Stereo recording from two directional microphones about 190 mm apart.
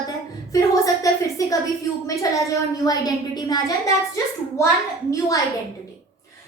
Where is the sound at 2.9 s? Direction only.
20° left (ahead or behind).